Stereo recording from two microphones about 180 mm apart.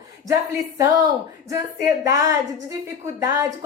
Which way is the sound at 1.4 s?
20° right (ahead or behind).